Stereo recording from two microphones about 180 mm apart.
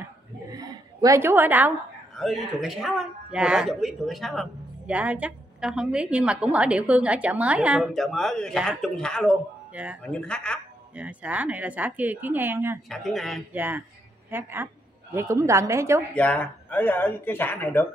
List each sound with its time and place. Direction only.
0.0 s a sound: 20° right (ahead or behind)
2.1 s a woman's voice: centre (ahead or behind)
9.8 s speech: 10° right (ahead or behind)
10.1 s a woman's voice: 5° left (ahead or behind)
11.0 s speech: 10° right (ahead or behind)
12.9 s a woman's voice: centre (ahead or behind)
13.5 s speech: 10° right (ahead or behind)
16.2 s speech: 10° left (ahead or behind)